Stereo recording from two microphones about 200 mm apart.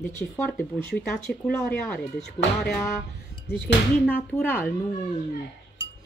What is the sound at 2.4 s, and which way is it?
Speech, 20° left (ahead or behind).